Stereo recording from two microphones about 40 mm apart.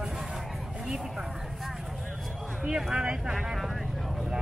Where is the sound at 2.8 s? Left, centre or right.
Centre.